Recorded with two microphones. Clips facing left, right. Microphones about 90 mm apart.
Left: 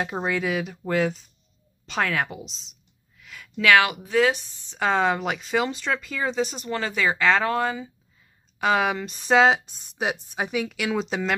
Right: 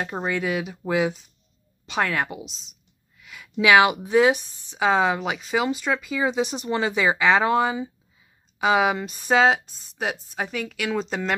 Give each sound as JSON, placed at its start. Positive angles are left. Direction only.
{"t": 0.0, "sound": "speech", "side_deg": 0}
{"t": 3.2, "sound": "a sound", "side_deg": -5}
{"t": 3.5, "sound": "speech", "side_deg": -20}
{"t": 4.7, "sound": "speech", "side_deg": -5}
{"t": 8.5, "sound": "speech", "side_deg": -5}